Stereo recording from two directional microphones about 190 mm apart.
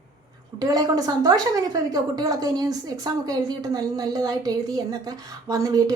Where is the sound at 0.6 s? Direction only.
20° right (ahead or behind).